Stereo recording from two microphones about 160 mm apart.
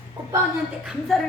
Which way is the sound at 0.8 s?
Centre (ahead or behind).